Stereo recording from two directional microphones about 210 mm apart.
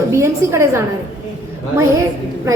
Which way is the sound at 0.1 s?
15° right (ahead or behind).